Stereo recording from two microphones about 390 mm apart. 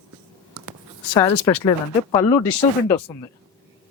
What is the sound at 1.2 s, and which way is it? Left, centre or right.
Speech, centre.